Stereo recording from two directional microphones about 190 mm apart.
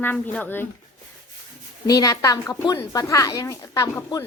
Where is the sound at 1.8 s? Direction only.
20° left (ahead or behind).